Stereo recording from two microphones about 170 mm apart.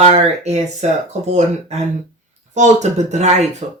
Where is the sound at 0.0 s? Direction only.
40° right (ahead or behind).